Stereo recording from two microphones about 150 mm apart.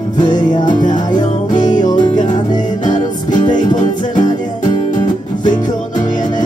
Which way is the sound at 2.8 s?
55° left (ahead or behind).